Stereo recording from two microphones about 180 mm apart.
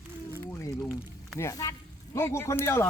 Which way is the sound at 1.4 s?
20° left (ahead or behind).